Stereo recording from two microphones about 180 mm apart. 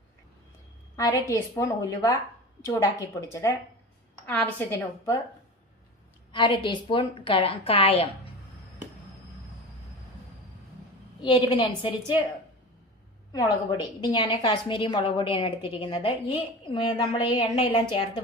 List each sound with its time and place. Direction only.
0.9 s a woman's voice: 20° left (ahead or behind)
4.3 s a woman's voice: 10° left (ahead or behind)
6.3 s a woman's voice: 25° left (ahead or behind)
11.2 s a woman's voice: 25° left (ahead or behind)
13.3 s a woman's voice: 20° left (ahead or behind)